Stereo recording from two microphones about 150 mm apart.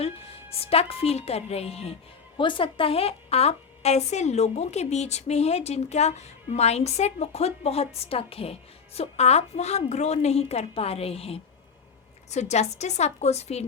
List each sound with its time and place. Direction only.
0.0 s a woman's voice: 40° left (ahead or behind)